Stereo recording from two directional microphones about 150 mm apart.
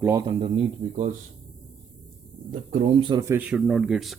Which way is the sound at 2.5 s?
60° right (ahead or behind).